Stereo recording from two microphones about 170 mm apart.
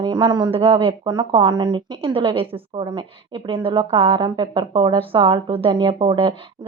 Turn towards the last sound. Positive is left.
turn(degrees=-30)  # may be behind; listen again after turning